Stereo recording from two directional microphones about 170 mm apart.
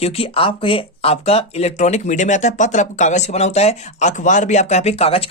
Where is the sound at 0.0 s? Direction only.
35° left (ahead or behind).